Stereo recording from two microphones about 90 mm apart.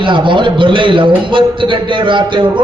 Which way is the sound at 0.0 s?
65° right (ahead or behind).